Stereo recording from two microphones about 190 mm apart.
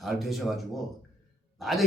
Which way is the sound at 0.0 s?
Centre (ahead or behind).